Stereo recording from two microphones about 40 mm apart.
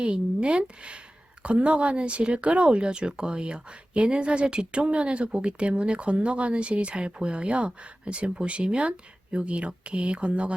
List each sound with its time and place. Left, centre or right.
0.0 s speech: right